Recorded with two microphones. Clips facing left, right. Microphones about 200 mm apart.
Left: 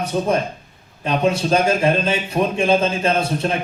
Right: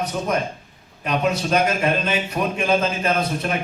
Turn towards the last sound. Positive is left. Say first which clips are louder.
# left 3 dB
turn(degrees=30)  # may be behind; listen again after turning